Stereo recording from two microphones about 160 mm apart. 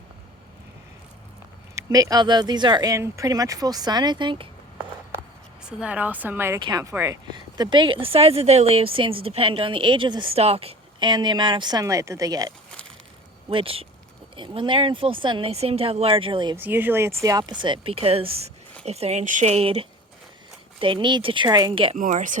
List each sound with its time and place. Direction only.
1.7 s speech: 20° right (ahead or behind)
5.6 s speech: 5° right (ahead or behind)
6.6 s speech: 25° right (ahead or behind)
13.5 s speech: 35° right (ahead or behind)
16.6 s speech: 10° right (ahead or behind); by 21.9 s 30° right (ahead or behind)
21.9 s a woman's voice: 55° right (ahead or behind)